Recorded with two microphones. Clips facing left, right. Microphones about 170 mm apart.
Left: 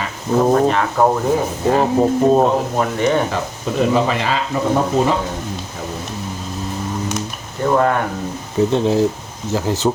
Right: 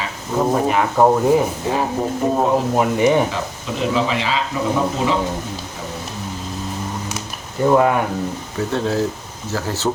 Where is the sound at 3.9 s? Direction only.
55° left (ahead or behind).